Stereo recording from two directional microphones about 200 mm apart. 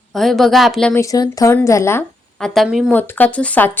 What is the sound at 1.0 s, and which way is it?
Speech, 15° left (ahead or behind).